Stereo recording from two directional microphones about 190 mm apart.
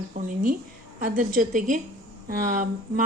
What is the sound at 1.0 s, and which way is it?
Speech, 45° right (ahead or behind).